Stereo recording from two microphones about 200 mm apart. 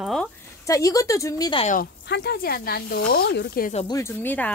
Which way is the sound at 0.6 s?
15° left (ahead or behind).